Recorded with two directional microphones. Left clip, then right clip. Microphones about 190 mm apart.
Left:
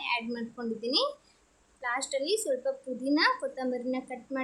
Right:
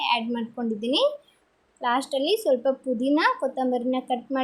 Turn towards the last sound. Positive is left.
turn(degrees=-20)  # may be behind; listen again after turning